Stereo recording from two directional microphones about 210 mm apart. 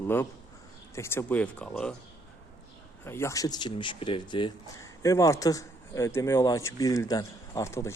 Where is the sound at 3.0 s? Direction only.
10° left (ahead or behind).